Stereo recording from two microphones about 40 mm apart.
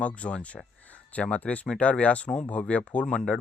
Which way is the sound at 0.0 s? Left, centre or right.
Left.